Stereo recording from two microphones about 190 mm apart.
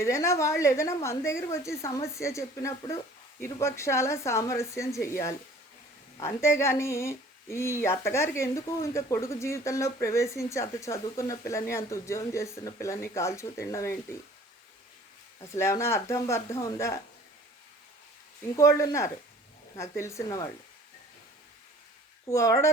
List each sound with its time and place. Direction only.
0.0 s speech: 15° left (ahead or behind)
15.5 s speech: 15° left (ahead or behind)
18.5 s speech: 15° left (ahead or behind)
22.3 s speech: 15° left (ahead or behind)